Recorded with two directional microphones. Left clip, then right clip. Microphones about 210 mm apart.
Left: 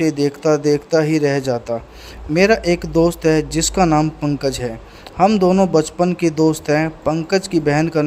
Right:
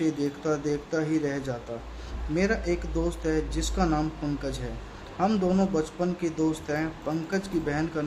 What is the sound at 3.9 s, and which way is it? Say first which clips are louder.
Speech: left 12 dB; 30° left (ahead or behind).